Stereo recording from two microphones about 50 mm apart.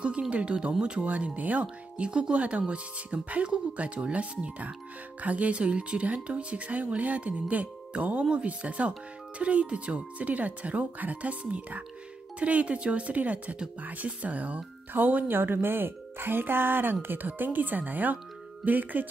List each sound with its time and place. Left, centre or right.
0.3 s speech: right
2.0 s speech: centre; by 19.0 s right